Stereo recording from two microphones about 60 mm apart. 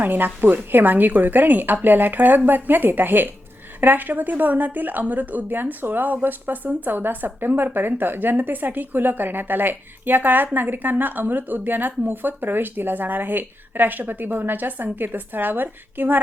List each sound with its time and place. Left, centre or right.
0.0 s speech: right